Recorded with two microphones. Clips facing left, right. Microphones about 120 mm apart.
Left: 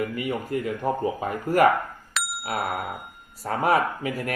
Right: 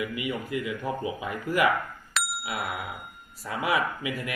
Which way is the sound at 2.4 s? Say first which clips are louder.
Left 5 dB; 45° left (ahead or behind).